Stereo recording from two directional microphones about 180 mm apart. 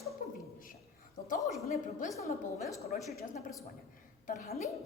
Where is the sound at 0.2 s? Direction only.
50° left (ahead or behind).